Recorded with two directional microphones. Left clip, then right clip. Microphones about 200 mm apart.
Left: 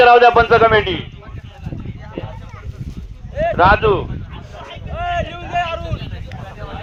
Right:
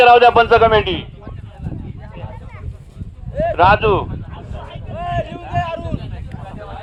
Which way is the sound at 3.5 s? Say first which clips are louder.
Even; 45° left (ahead or behind).